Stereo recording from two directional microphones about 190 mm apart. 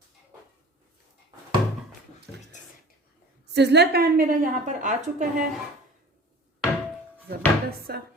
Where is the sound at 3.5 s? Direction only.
60° right (ahead or behind); by 5.5 s 40° right (ahead or behind).